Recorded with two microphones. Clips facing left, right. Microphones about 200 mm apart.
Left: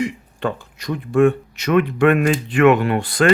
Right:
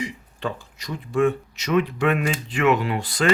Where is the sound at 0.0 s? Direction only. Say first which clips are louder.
Left 6 dB; 60° left (ahead or behind).